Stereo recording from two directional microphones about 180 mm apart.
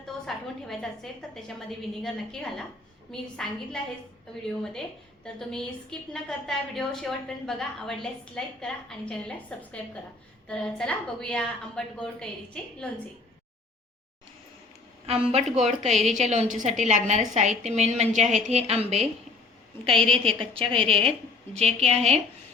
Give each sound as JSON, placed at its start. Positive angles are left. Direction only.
{"t": 0.0, "sound": "a woman's voice", "side_deg": 0}
{"t": 15.0, "sound": "a woman's voice", "side_deg": -35}
{"t": 20.0, "sound": "a woman's voice", "side_deg": 5}
{"t": 20.6, "sound": "a woman's voice", "side_deg": -30}